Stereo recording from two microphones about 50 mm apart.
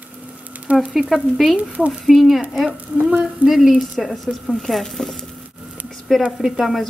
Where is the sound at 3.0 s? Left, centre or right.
Right.